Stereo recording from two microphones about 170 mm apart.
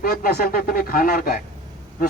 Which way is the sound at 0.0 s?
60° left (ahead or behind).